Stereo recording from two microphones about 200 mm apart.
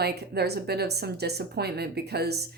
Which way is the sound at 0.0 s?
55° right (ahead or behind).